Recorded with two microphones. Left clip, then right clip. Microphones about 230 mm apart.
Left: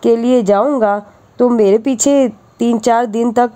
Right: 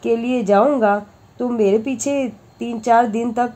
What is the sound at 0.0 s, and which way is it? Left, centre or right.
Speech, left.